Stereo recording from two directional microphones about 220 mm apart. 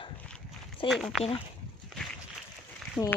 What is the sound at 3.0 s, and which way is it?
Speech, 10° left (ahead or behind).